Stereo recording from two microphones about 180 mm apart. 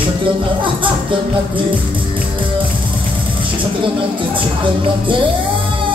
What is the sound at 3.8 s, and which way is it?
Music, 30° right (ahead or behind).